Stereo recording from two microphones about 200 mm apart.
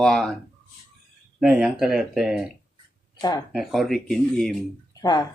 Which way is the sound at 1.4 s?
5° right (ahead or behind).